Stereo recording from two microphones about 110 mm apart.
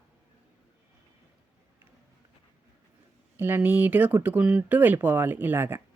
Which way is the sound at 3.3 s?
20° right (ahead or behind).